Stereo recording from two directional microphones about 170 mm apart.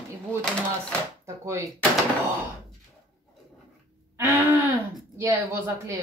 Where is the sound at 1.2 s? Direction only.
15° right (ahead or behind).